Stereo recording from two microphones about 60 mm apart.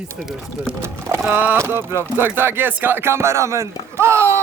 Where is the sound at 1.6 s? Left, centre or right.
Right.